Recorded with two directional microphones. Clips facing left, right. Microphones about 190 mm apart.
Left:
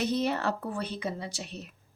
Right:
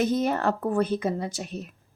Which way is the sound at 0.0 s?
50° right (ahead or behind).